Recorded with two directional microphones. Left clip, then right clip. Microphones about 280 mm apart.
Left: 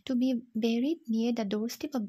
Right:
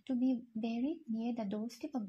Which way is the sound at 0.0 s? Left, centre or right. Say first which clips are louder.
Left 5 dB; left.